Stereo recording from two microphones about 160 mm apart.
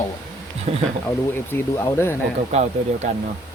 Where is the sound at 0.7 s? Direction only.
45° right (ahead or behind).